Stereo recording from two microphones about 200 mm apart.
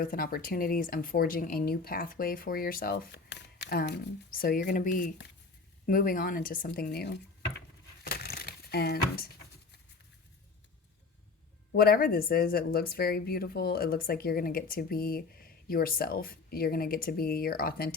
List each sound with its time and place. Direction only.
0.0 s speech: 45° left (ahead or behind)
8.0 s a sound: 50° left (ahead or behind)
11.7 s speech: 50° left (ahead or behind)